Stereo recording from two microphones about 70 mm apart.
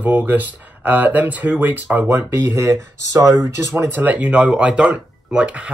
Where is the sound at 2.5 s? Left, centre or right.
Right.